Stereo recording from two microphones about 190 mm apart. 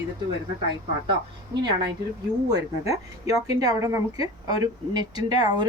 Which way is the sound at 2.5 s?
15° right (ahead or behind).